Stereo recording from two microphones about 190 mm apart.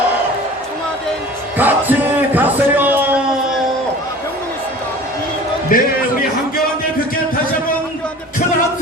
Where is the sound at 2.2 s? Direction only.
10° right (ahead or behind).